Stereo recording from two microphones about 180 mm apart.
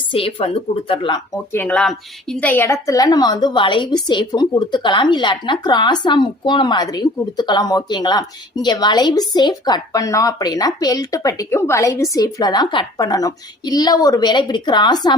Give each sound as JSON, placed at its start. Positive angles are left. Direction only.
{"t": 0.1, "sound": "a woman's voice", "side_deg": 30}
{"t": 1.5, "sound": "a woman's voice", "side_deg": 5}